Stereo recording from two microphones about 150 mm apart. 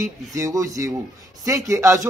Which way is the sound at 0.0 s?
20° right (ahead or behind).